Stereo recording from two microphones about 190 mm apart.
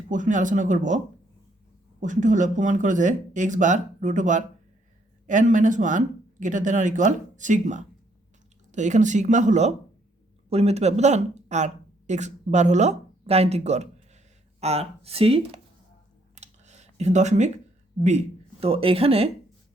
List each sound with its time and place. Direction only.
0.1 s speech: 40° right (ahead or behind)
16.3 s a sound: 35° right (ahead or behind)
18.0 s speech: 35° right (ahead or behind)